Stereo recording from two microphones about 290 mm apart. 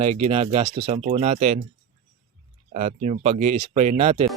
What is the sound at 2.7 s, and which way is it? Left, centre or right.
Speech, right.